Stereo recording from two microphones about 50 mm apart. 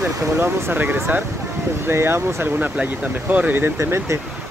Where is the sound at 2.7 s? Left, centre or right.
Right.